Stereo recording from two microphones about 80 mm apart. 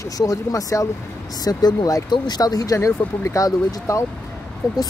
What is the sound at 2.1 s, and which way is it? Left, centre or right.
Speech, left.